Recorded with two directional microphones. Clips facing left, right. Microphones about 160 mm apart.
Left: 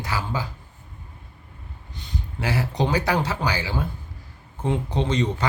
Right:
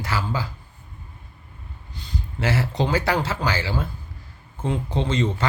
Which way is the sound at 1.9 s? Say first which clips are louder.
Right 1 dB; 15° left (ahead or behind).